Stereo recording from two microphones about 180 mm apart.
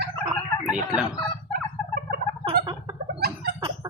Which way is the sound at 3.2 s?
65° right (ahead or behind).